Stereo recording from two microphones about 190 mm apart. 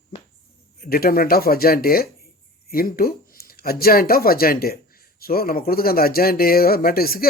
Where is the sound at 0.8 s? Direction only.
50° left (ahead or behind).